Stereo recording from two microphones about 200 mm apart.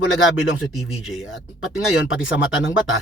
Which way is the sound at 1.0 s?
85° left.